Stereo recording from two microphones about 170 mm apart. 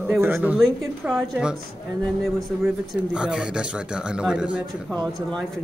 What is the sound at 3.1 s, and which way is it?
Speech, 5° right (ahead or behind).